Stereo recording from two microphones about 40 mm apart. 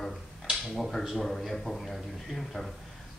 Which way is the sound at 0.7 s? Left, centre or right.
Centre.